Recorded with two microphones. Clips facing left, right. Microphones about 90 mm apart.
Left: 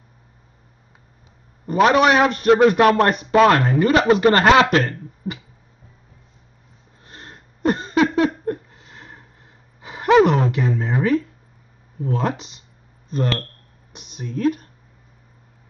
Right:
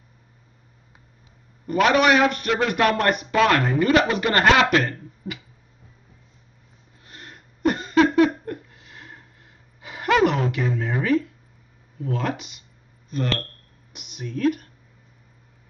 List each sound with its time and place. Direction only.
1.7 s a man's voice: 30° left (ahead or behind)
7.1 s a sound: 30° left (ahead or behind)
12.0 s a man's voice: 30° left (ahead or behind)
13.9 s a man's voice: 30° left (ahead or behind)